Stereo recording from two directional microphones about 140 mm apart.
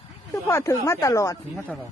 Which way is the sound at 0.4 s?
20° left (ahead or behind).